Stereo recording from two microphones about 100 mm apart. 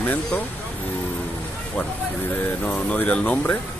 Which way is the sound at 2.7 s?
15° left (ahead or behind).